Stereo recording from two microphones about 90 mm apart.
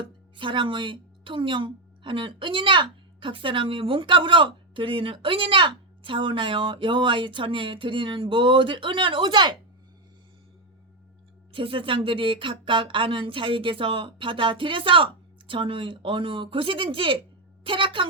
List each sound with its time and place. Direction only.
0.3 s a woman's voice: 65° right (ahead or behind)
11.5 s a woman's voice: 75° right (ahead or behind)